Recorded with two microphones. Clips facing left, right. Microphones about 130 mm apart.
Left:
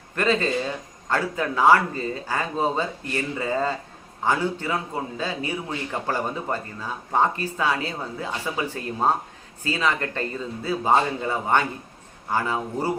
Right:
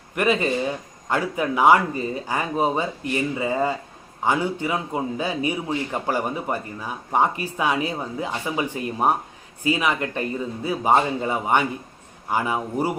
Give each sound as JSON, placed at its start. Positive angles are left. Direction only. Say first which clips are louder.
{"t": 0.2, "sound": "a man's voice", "louder": "right 1 dB", "side_deg": -15}